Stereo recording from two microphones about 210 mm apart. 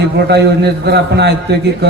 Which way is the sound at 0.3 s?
50° right (ahead or behind).